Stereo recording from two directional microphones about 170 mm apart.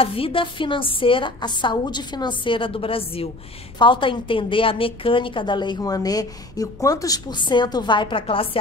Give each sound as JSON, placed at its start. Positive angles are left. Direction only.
{"t": 0.0, "sound": "a woman's voice", "side_deg": 35}